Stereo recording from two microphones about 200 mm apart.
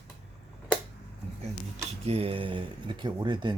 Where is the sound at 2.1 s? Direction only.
30° right (ahead or behind).